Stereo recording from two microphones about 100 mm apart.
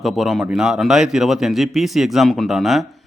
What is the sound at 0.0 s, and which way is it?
Speech, centre (ahead or behind).